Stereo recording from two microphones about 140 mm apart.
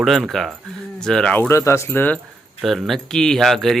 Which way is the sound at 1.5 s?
20° left (ahead or behind).